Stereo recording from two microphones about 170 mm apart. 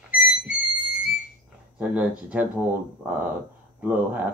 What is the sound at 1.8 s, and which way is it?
Speech, 5° right (ahead or behind).